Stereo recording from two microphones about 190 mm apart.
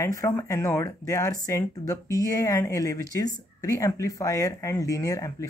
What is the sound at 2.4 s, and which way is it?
Speech, 15° left (ahead or behind).